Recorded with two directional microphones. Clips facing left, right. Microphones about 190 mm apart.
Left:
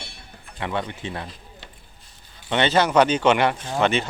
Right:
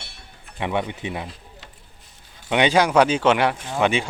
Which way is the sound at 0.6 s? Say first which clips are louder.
Right 3 dB; 15° right (ahead or behind).